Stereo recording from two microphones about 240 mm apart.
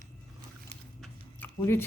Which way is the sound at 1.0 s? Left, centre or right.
Centre.